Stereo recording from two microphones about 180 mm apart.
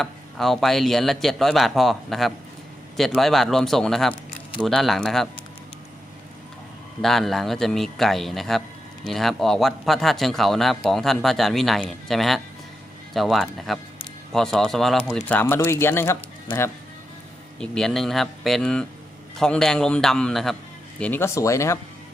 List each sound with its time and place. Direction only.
0.0 s speech: centre (ahead or behind)
7.0 s speech: centre (ahead or behind)
17.6 s speech: 5° left (ahead or behind)